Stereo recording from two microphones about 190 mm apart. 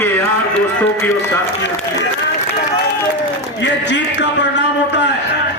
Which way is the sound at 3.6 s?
70° left (ahead or behind).